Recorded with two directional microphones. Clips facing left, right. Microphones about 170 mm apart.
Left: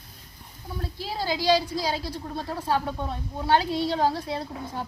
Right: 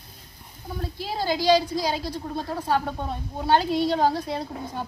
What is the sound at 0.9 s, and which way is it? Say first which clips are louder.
A woman's voice: right 3 dB; 15° right (ahead or behind).